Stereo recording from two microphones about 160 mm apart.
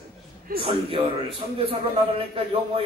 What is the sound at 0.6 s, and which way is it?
Speech, 35° right (ahead or behind).